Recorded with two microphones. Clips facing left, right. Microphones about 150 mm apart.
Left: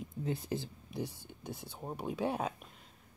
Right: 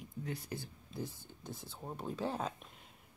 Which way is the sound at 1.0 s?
70° left (ahead or behind).